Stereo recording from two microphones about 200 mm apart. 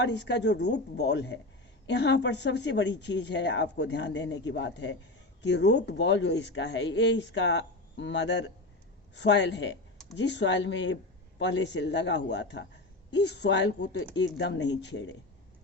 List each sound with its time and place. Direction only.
0.0 s speech: 60° left (ahead or behind)